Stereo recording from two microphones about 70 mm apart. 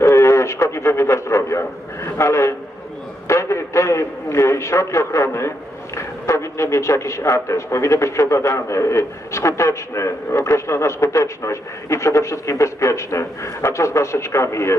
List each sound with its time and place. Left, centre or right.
0.0 s a man's voice: left